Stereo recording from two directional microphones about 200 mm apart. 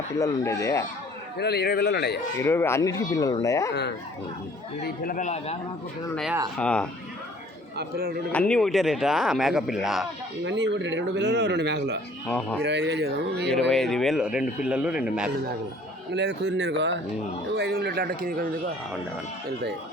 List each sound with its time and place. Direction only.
0.2 s speech: 15° left (ahead or behind)
1.4 s speech: 55° left (ahead or behind)
2.4 s speech: 10° left (ahead or behind)
3.7 s speech: 60° left (ahead or behind)
4.8 s a man's voice: 50° left (ahead or behind)
6.6 s speech: 5° left (ahead or behind)
7.8 s speech: 50° right (ahead or behind)
8.3 s speech: 5° left (ahead or behind)
10.4 s speech: 65° right (ahead or behind)
12.3 s speech: 5° left (ahead or behind)
12.6 s speech: 60° right (ahead or behind)
13.5 s speech: centre (ahead or behind)
16.1 s speech: 60° right (ahead or behind)